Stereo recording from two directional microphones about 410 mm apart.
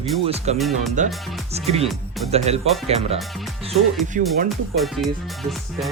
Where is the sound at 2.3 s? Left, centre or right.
Centre.